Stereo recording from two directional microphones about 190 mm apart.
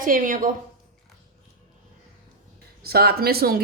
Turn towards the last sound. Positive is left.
turn(degrees=-55)  # may be behind; listen again after turning